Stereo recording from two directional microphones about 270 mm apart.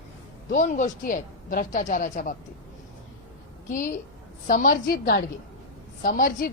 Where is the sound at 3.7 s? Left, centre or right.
Left.